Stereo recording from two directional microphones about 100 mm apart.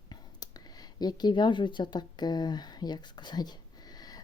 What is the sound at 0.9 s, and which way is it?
A woman's voice, 45° left (ahead or behind).